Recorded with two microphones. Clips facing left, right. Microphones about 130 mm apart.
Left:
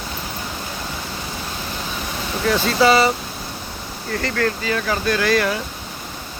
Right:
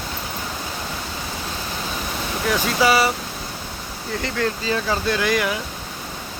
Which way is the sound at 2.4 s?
10° right (ahead or behind).